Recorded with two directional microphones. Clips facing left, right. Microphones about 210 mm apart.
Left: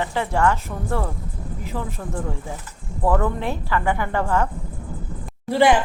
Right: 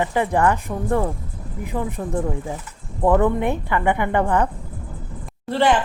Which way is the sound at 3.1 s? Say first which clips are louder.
Right 4 dB; 20° right (ahead or behind).